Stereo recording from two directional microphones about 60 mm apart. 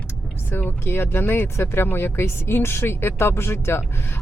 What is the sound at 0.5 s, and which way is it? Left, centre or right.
Speech, left.